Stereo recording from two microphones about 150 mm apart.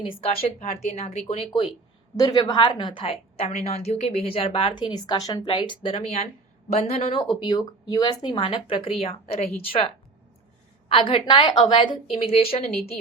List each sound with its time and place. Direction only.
0.2 s speech: 45° left (ahead or behind)
2.4 s a woman's voice: 30° left (ahead or behind)
7.4 s a woman's voice: 25° left (ahead or behind); by 9.8 s 40° left (ahead or behind)
10.8 s a woman's voice: 35° left (ahead or behind)